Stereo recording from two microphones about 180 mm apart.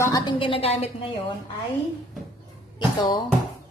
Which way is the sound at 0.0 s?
20° left (ahead or behind).